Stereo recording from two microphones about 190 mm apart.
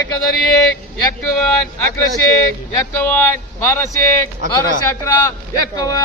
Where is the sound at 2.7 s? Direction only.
10° left (ahead or behind).